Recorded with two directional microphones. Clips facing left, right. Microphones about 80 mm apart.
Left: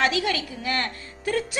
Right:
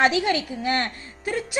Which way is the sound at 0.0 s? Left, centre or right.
Right.